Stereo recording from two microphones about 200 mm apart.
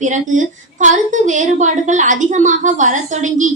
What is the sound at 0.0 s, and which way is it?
A woman's voice, 40° right (ahead or behind).